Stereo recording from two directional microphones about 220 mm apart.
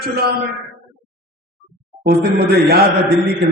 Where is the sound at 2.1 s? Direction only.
45° right (ahead or behind).